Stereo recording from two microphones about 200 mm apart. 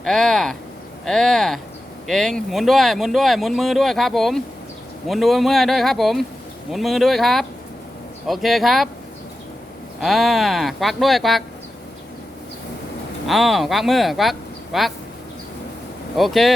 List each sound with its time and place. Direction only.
0.0 s speech: centre (ahead or behind)
10.0 s speech: centre (ahead or behind)
13.2 s speech: centre (ahead or behind)
16.1 s speech: centre (ahead or behind)